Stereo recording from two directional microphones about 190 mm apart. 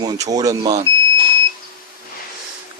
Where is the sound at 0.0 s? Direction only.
20° right (ahead or behind).